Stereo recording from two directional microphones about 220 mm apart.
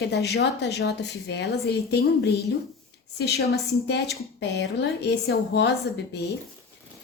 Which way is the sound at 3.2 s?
50° left (ahead or behind).